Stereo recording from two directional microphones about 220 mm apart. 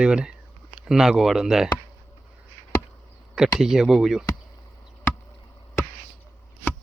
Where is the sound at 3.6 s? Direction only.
Centre (ahead or behind).